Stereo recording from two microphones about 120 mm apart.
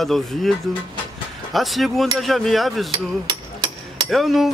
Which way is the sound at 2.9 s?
40° right (ahead or behind).